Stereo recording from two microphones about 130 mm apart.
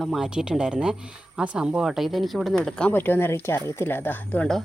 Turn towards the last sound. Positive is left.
turn(degrees=15)  # may be behind; listen again after turning